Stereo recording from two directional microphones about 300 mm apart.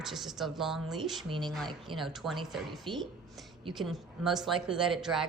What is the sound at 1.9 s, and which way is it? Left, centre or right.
Speech, centre.